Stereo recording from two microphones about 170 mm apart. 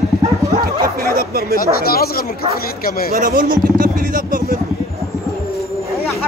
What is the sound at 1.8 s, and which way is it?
Speech, 65° left (ahead or behind).